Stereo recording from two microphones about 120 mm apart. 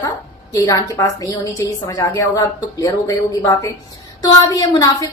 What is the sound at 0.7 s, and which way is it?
A woman's voice, 30° left (ahead or behind).